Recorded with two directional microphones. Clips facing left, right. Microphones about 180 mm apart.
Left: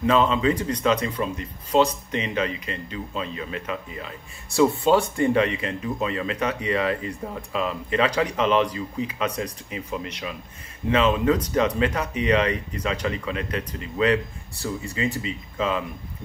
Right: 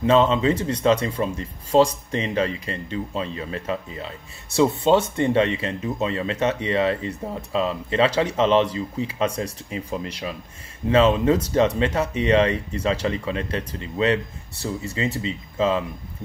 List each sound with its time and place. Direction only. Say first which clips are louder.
0.0 s speech: right 2 dB; 30° right (ahead or behind)
5.1 s speech: right 1 dB; 25° right (ahead or behind)
15.2 s speech: right 4 dB; 30° right (ahead or behind)